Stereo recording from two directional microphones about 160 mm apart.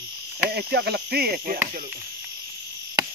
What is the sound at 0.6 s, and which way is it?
Speech, 90° right.